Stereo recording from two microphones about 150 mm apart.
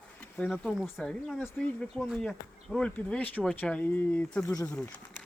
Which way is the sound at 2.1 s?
Centre (ahead or behind).